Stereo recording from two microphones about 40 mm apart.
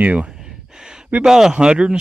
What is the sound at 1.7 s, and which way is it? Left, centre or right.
Speech, right.